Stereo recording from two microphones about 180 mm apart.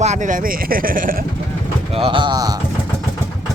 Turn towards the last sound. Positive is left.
turn(degrees=-25)  # may be behind; listen again after turning